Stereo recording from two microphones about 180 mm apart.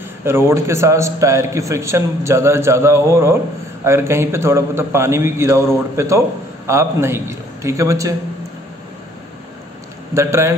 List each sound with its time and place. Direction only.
0.2 s a man's voice: 15° right (ahead or behind)
10.1 s a man's voice: 15° right (ahead or behind)